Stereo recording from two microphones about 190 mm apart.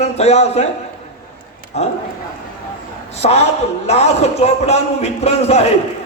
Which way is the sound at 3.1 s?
35° left (ahead or behind).